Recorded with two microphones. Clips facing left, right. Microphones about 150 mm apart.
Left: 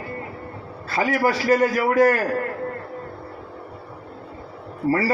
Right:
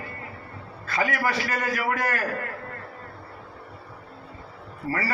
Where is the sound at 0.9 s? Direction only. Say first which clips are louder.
Left 5 dB; 35° left (ahead or behind).